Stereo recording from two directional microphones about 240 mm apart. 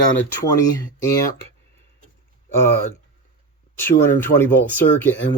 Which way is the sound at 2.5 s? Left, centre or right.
Centre.